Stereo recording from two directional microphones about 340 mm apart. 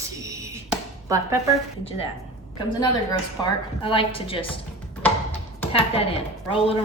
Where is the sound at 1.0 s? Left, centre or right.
Centre.